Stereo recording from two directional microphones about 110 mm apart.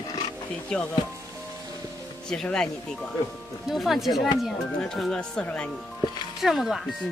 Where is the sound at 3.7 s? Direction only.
Centre (ahead or behind).